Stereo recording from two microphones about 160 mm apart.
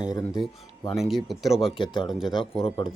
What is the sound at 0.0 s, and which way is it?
Speech, 25° left (ahead or behind).